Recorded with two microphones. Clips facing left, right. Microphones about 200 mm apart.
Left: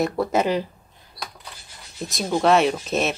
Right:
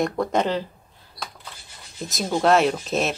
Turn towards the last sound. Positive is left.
turn(degrees=0)  # may be behind; listen again after turning